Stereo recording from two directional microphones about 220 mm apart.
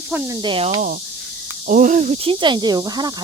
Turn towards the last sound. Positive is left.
turn(degrees=-20)  # may be behind; listen again after turning